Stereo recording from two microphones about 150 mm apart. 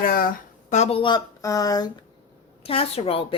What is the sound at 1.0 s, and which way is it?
Speech, 30° left (ahead or behind).